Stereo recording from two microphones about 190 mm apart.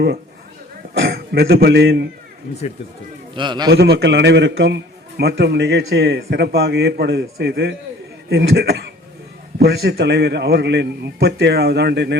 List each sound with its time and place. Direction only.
1.0 s a man's voice: 55° right (ahead or behind)
3.3 s a man's voice: 25° right (ahead or behind)
3.7 s a man's voice: 60° right (ahead or behind)